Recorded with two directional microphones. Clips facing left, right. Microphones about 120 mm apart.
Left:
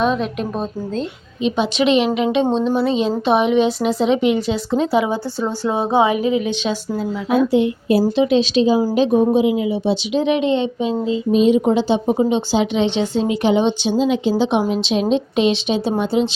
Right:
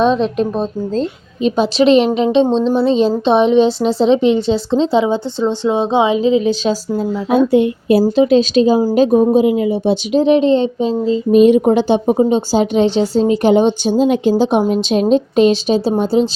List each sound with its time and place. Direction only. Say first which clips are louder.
0.0 s speech: right 5 dB; 30° right (ahead or behind)
2.4 s speech: right 4 dB; 10° left (ahead or behind)
2.8 s a woman's voice: right 5 dB; 30° right (ahead or behind)
7.5 s speech: right 4 dB; 55° right (ahead or behind)
8.1 s speech: right 4 dB; 40° right (ahead or behind)
11.3 s speech: right 5 dB; 55° right (ahead or behind)
12.1 s speech: right 4 dB; 40° right (ahead or behind)